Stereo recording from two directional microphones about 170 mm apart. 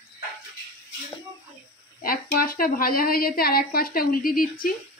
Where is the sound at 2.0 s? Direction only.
60° left (ahead or behind).